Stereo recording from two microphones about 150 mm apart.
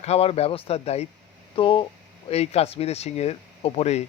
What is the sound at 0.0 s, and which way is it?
Speech, 40° left (ahead or behind).